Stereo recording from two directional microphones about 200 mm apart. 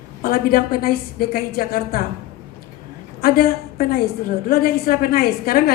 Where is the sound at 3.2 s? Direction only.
45° left (ahead or behind).